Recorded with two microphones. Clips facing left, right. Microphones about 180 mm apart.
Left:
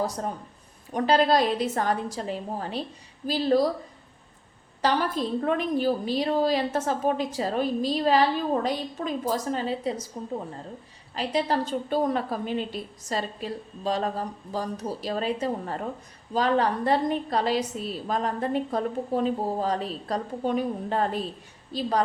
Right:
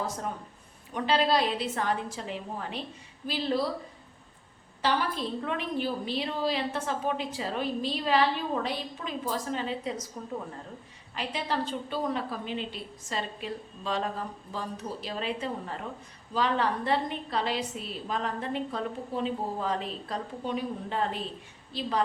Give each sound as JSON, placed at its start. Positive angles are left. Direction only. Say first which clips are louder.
{"t": 0.9, "sound": "a woman's voice", "louder": "left 5 dB", "side_deg": 40}
{"t": 4.8, "sound": "a woman's voice", "louder": "left 4 dB", "side_deg": 40}
{"t": 11.1, "sound": "a woman's voice", "louder": "left 6 dB", "side_deg": 40}